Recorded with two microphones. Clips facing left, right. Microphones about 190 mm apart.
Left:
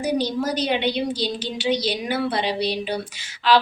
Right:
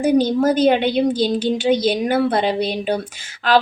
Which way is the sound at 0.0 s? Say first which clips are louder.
Right 7 dB; 50° right (ahead or behind).